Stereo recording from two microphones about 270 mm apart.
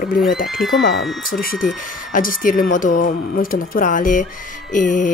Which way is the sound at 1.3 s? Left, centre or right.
Left.